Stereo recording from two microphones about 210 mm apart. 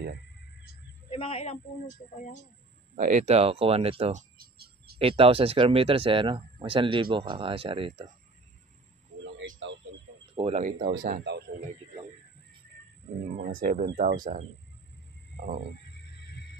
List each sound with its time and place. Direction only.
1.1 s a man's voice: 25° left (ahead or behind)
3.0 s speech: 35° right (ahead or behind)
4.9 s speech: 25° right (ahead or behind)
10.3 s speech: 30° right (ahead or behind)
10.8 s speech: 45° right (ahead or behind)
13.6 s speech: 40° right (ahead or behind)
15.3 s a sound: 40° right (ahead or behind)
16.1 s music: 50° left (ahead or behind)